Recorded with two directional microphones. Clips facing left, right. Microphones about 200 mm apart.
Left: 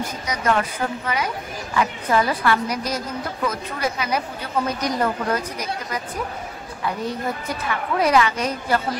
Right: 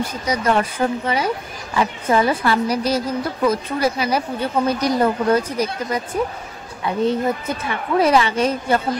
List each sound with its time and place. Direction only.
0.0 s a woman's voice: 30° right (ahead or behind)
7.0 s a woman's voice: 25° right (ahead or behind)